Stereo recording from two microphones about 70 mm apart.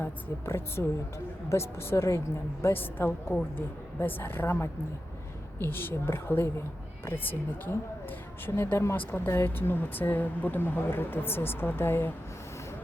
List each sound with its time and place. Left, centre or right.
0.0 s speech: left
9.0 s speech: left